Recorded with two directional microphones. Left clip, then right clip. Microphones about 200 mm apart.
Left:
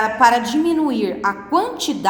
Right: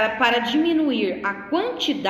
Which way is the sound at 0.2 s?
65° left (ahead or behind).